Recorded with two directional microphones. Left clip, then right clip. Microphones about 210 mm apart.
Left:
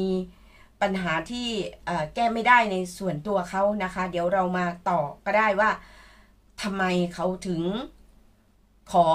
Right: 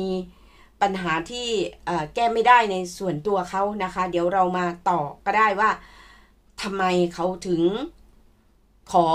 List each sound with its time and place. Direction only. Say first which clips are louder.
0.7 s speech: right 3 dB; 35° right (ahead or behind)